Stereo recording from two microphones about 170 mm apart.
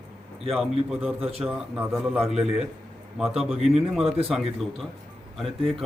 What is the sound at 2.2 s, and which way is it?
Speech, 40° right (ahead or behind).